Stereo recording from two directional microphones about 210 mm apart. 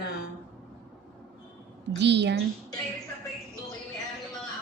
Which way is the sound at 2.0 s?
55° right (ahead or behind).